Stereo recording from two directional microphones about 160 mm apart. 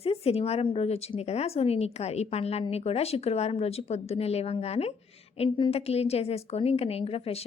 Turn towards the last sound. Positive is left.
turn(degrees=40)  # may be behind; listen again after turning